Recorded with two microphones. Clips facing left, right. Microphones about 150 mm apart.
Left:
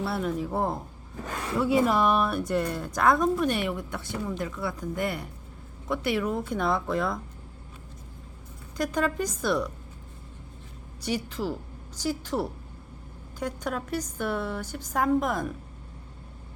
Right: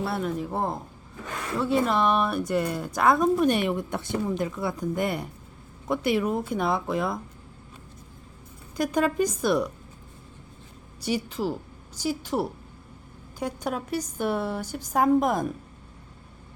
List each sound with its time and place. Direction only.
0.0 s speech: centre (ahead or behind)
3.3 s a woman's voice: 15° right (ahead or behind)
8.7 s a woman's voice: 10° right (ahead or behind)
11.0 s a woman's voice: 10° right (ahead or behind)